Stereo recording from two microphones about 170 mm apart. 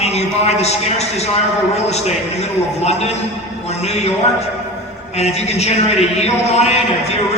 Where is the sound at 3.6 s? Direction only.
40° left (ahead or behind).